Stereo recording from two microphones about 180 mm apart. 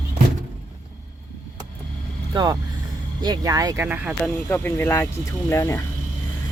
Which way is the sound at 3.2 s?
20° right (ahead or behind).